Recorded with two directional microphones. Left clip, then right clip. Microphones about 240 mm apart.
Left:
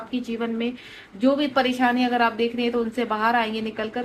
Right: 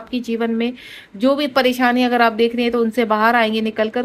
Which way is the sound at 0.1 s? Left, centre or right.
Right.